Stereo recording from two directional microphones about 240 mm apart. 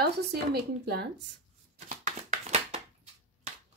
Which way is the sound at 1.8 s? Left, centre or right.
Right.